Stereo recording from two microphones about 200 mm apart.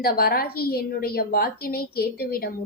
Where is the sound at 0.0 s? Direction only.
50° left (ahead or behind).